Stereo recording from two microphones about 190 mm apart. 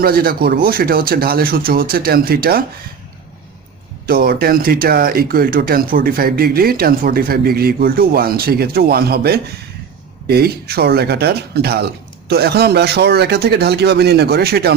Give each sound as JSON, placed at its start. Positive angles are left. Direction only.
{"t": 0.0, "sound": "speech", "side_deg": -50}
{"t": 4.0, "sound": "a man's voice", "side_deg": -50}